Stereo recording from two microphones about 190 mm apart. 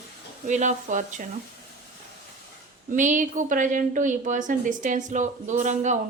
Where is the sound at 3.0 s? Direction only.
40° right (ahead or behind).